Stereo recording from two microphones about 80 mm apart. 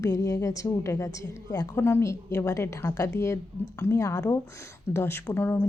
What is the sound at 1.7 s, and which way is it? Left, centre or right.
A woman's voice, left.